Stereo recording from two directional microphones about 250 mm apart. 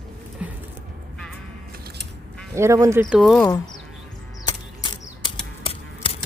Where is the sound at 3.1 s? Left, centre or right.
Centre.